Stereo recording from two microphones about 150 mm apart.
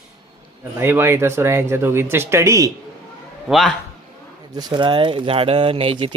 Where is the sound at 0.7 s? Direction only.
15° right (ahead or behind).